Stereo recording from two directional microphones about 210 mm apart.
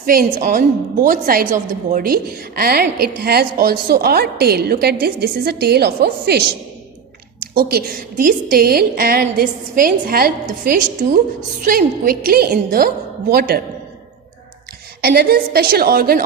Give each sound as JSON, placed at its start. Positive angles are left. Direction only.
{"t": 0.0, "sound": "a woman's voice", "side_deg": -45}
{"t": 7.5, "sound": "a woman's voice", "side_deg": -45}
{"t": 15.0, "sound": "a woman's voice", "side_deg": -45}